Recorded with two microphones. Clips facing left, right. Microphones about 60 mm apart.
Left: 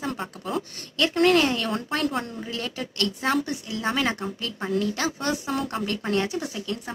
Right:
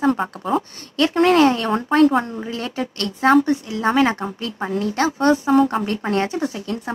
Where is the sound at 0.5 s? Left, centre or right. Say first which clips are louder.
Right 7 dB; right.